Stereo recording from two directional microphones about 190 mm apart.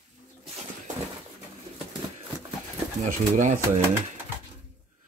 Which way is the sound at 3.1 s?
45° right (ahead or behind).